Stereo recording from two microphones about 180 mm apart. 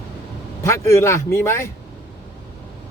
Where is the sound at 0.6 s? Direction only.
15° left (ahead or behind).